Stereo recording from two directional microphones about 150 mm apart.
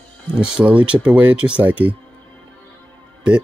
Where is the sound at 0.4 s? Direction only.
5° right (ahead or behind).